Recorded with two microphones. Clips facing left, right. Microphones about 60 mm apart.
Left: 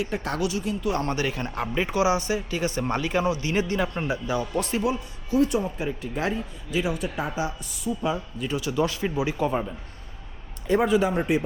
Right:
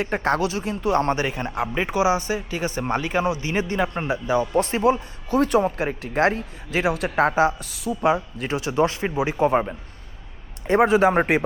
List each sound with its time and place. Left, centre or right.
0.0 s speech: right
5.3 s a man's voice: right
7.9 s speech: right
8.5 s speech: right